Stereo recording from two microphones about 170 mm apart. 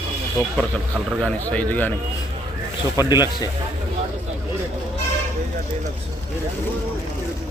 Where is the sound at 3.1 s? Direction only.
25° left (ahead or behind).